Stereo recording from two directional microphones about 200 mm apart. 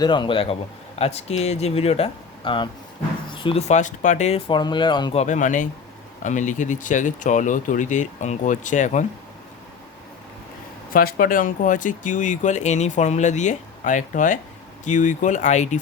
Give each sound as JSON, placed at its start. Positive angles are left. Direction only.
{"t": 0.0, "sound": "speech", "side_deg": 25}
{"t": 5.2, "sound": "speech", "side_deg": 40}
{"t": 10.9, "sound": "speech", "side_deg": 45}